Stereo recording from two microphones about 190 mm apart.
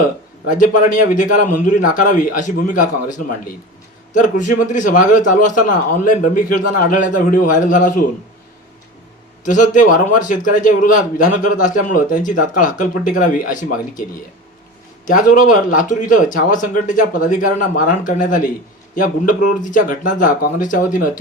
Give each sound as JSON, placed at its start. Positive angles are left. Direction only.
{"t": 0.5, "sound": "a man's voice", "side_deg": 40}
{"t": 9.4, "sound": "a man's voice", "side_deg": 40}
{"t": 15.0, "sound": "a man's voice", "side_deg": 45}